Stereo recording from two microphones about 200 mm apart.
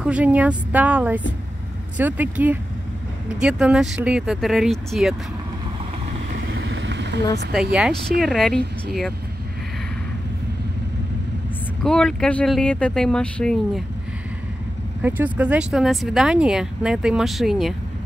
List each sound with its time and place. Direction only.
0.0 s a woman's voice: 5° right (ahead or behind)
6.4 s vehicle: 75° right (ahead or behind)
7.5 s speech: 5° right (ahead or behind)
11.8 s speech: 5° left (ahead or behind)
15.0 s speech: 10° right (ahead or behind)